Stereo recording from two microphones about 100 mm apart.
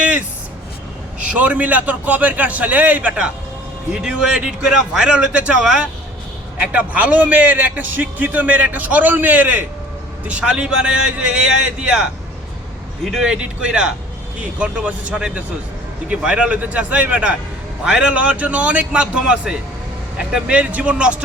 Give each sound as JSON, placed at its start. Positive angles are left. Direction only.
{"t": 1.2, "sound": "a man's voice", "side_deg": -15}
{"t": 13.1, "sound": "a man's voice", "side_deg": -5}